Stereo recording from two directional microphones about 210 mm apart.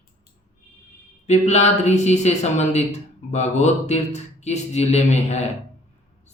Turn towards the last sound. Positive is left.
turn(degrees=30)  # may be behind; listen again after turning